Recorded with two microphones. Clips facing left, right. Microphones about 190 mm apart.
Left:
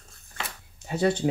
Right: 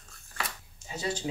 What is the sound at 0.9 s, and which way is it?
Speech, 60° left (ahead or behind).